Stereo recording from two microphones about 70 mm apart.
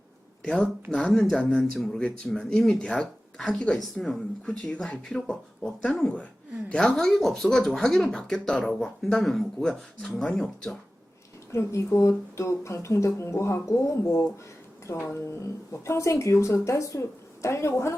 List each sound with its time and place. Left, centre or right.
0.4 s speech: centre
4.4 s speech: centre
11.5 s speech: left